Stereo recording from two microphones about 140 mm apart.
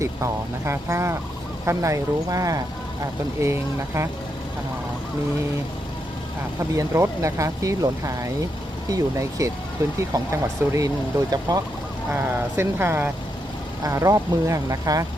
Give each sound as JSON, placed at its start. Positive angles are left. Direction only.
{"t": 0.0, "sound": "speech", "side_deg": -20}
{"t": 6.6, "sound": "speech", "side_deg": -20}
{"t": 12.1, "sound": "speech", "side_deg": -15}